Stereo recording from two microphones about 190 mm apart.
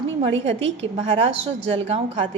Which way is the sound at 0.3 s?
80° right.